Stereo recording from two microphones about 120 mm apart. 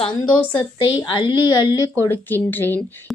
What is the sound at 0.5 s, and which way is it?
A woman's voice, 40° left (ahead or behind).